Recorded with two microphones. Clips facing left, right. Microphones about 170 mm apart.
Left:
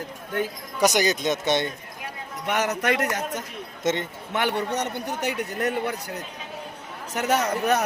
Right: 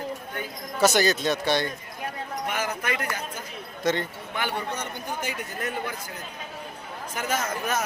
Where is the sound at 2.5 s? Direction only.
70° left (ahead or behind).